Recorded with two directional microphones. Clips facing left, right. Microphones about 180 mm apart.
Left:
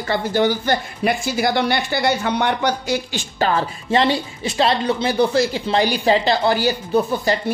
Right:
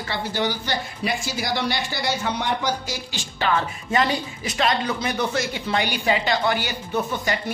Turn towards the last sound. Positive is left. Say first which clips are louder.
# left 6 dB
turn(degrees=35)  # may be behind; listen again after turning